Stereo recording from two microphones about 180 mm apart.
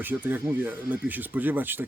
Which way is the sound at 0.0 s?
10° right (ahead or behind).